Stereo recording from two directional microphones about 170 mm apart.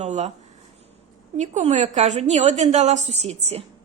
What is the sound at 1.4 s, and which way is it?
A woman's voice, 45° right (ahead or behind).